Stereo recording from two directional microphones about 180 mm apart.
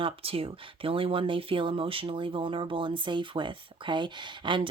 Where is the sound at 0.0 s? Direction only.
30° right (ahead or behind).